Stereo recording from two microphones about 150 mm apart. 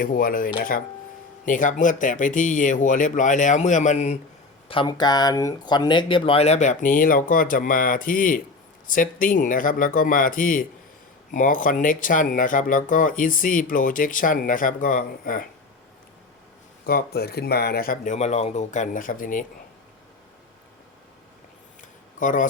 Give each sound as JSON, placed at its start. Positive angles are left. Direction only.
{"t": 0.0, "sound": "speech", "side_deg": 70}
{"t": 4.7, "sound": "speech", "side_deg": 30}
{"t": 16.8, "sound": "speech", "side_deg": 85}
{"t": 21.8, "sound": "a sound", "side_deg": 60}